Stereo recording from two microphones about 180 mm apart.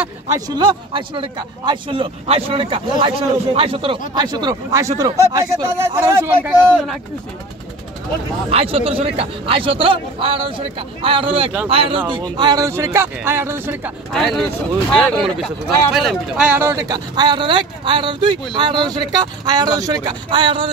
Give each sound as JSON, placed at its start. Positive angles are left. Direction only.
{"t": 0.6, "sound": "a man's voice", "side_deg": -25}
{"t": 8.5, "sound": "a man's voice", "side_deg": -35}
{"t": 14.1, "sound": "speech", "side_deg": 0}